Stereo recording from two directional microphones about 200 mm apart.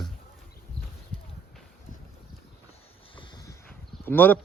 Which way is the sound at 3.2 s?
20° left (ahead or behind).